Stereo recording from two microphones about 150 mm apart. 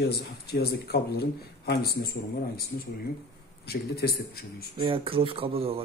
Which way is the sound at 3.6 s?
90° left.